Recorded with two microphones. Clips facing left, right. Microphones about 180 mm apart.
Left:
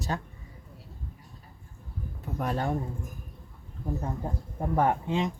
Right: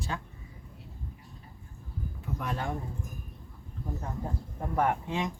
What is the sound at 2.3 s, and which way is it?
Speech, 40° left (ahead or behind).